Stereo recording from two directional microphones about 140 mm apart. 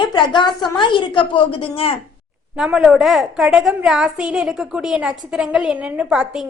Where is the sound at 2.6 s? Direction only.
5° right (ahead or behind).